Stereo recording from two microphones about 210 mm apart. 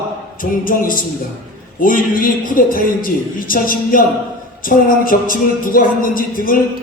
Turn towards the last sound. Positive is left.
turn(degrees=40)  # may be behind; listen again after turning